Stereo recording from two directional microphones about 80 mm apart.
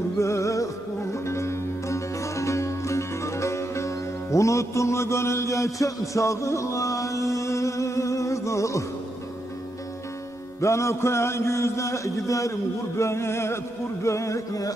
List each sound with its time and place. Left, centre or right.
0.2 s music: left
1.1 s sitar: left
10.6 s a man's voice: left